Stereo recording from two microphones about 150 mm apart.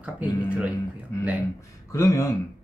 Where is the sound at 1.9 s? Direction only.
20° left (ahead or behind).